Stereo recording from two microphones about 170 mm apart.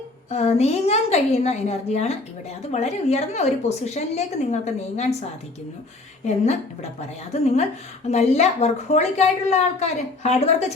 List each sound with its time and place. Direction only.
0.3 s a woman's voice: 35° left (ahead or behind)
6.2 s a woman's voice: 40° left (ahead or behind)